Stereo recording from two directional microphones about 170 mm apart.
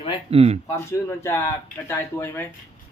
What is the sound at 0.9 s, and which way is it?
Speech, 15° left (ahead or behind).